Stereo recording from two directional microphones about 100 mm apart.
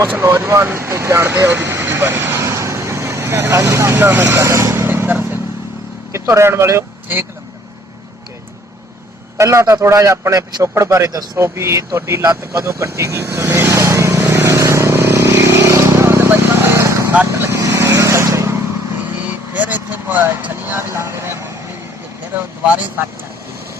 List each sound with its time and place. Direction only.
0.2 s speech: 25° right (ahead or behind)
9.4 s a man's voice: 30° right (ahead or behind)
14.2 s vehicle: 25° right (ahead or behind)